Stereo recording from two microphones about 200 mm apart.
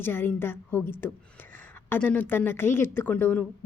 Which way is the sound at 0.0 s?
10° left (ahead or behind).